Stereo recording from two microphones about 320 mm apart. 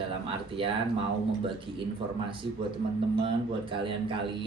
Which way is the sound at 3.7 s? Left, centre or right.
Centre.